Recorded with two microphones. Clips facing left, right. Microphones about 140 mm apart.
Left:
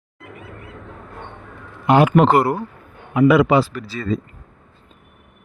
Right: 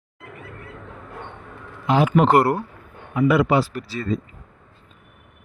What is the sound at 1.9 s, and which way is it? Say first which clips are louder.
Speech: left 4 dB; 70° left (ahead or behind).